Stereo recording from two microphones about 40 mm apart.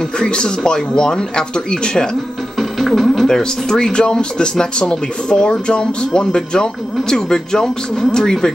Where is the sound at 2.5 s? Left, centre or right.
Centre.